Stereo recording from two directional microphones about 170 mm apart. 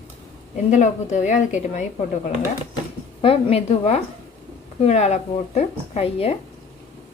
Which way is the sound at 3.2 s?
35° left (ahead or behind).